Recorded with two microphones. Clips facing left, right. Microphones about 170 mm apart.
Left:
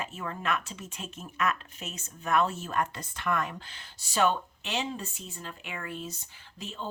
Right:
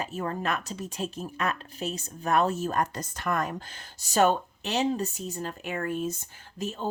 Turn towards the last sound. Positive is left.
turn(degrees=-45)  # may be behind; listen again after turning